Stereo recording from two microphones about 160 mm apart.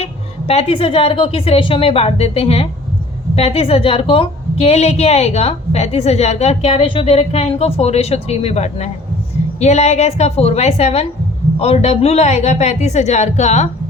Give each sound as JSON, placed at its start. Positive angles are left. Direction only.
{"t": 0.0, "sound": "a woman's voice", "side_deg": 40}